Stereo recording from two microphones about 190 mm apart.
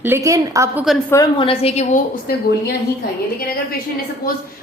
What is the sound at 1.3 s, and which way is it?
A woman's voice, 30° left (ahead or behind).